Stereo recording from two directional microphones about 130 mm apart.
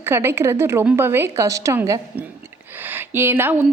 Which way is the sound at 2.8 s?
15° right (ahead or behind).